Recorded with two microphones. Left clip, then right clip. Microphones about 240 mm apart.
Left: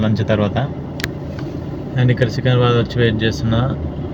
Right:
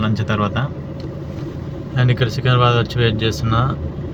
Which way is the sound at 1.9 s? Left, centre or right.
Right.